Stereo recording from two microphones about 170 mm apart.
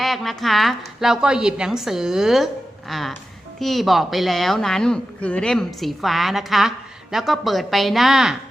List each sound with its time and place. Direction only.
0.0 s a woman's voice: centre (ahead or behind)